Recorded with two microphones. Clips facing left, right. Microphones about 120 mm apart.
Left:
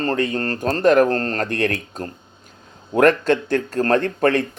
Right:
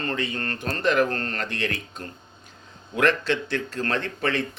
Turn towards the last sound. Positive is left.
turn(degrees=50)  # may be behind; listen again after turning